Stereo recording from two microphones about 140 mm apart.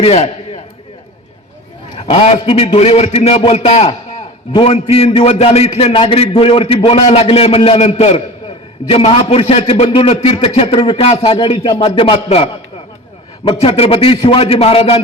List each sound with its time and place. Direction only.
0.0 s a sound: 45° left (ahead or behind)
2.0 s a man's voice: 45° left (ahead or behind)
13.6 s a man's voice: 45° left (ahead or behind)